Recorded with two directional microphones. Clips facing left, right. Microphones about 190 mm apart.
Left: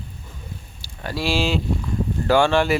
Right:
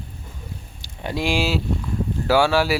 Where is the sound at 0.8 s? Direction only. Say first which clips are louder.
Right 1 dB; 20° right (ahead or behind).